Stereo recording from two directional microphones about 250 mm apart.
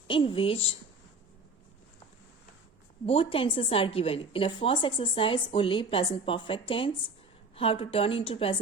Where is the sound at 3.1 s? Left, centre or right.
Left.